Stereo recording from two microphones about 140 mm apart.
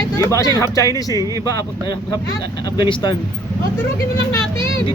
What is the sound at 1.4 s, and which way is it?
Speech, 25° left (ahead or behind).